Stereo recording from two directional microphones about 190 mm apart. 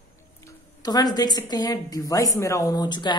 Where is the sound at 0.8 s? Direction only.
20° left (ahead or behind).